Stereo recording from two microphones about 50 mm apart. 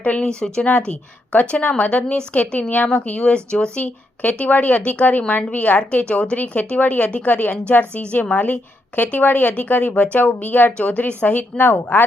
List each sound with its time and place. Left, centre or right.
0.0 s speech: left
3.8 s speech: left
10.7 s speech: left